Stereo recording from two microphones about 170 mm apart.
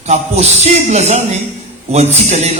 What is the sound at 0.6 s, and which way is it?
A man's voice, 40° right (ahead or behind).